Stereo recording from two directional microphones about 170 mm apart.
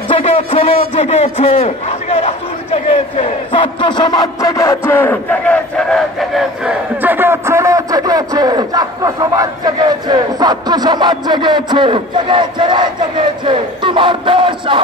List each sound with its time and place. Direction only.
0.1 s a man's voice: 35° left (ahead or behind); by 12.9 s 25° right (ahead or behind)
13.5 s battle cry: 30° right (ahead or behind)